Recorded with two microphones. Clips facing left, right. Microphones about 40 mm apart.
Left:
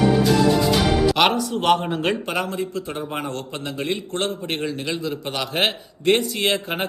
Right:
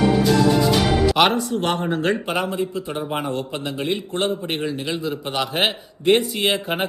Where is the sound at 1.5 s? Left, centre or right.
Left.